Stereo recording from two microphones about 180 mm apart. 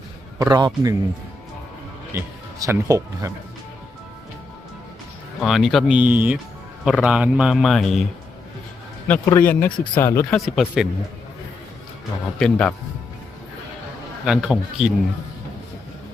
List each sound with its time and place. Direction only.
0.3 s a man's voice: 20° right (ahead or behind)
2.1 s speech: 15° right (ahead or behind)
5.4 s a man's voice: centre (ahead or behind)
9.0 s speech: 15° left (ahead or behind)
10.3 s a man's voice: centre (ahead or behind)
12.4 s a man's voice: 5° left (ahead or behind)
14.3 s a man's voice: 5° right (ahead or behind)